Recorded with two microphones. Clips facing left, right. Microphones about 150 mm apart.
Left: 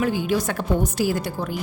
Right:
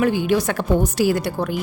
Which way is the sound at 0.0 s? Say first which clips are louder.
Right 4 dB; 70° right (ahead or behind).